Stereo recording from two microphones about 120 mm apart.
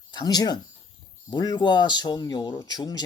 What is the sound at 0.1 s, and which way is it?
Speech, 35° left (ahead or behind).